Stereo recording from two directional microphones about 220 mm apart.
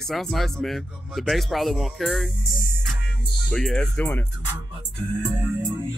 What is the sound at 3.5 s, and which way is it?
Speech, 5° left (ahead or behind).